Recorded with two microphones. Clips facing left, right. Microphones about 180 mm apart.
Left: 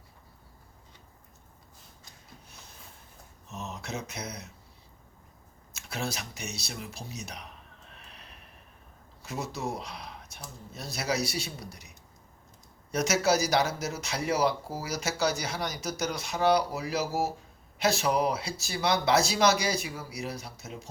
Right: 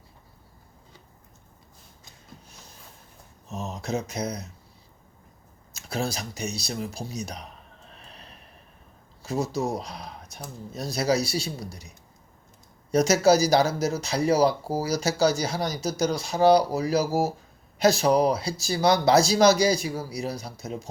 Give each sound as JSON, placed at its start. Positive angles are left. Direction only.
{"t": 3.5, "sound": "speech", "side_deg": -35}
{"t": 5.7, "sound": "speech", "side_deg": -35}
{"t": 7.9, "sound": "neigh", "side_deg": -35}
{"t": 9.2, "sound": "speech", "side_deg": -35}
{"t": 12.9, "sound": "speech", "side_deg": -35}